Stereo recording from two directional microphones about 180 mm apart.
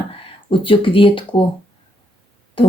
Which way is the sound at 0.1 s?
30° left (ahead or behind).